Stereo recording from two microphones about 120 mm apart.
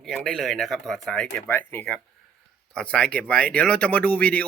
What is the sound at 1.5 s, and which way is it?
Speech, 15° left (ahead or behind).